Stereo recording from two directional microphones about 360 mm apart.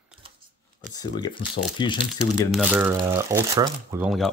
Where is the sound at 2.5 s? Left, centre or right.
Centre.